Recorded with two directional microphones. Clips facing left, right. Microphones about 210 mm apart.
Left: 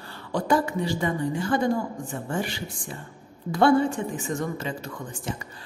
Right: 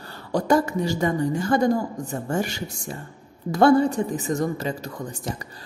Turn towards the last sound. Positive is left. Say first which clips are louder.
# right 2 dB
turn(degrees=-40)  # may be behind; listen again after turning